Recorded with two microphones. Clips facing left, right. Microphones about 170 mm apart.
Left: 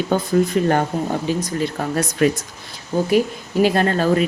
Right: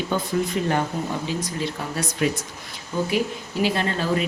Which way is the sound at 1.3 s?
50° left (ahead or behind).